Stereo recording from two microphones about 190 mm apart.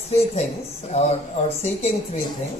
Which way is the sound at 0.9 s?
35° left (ahead or behind).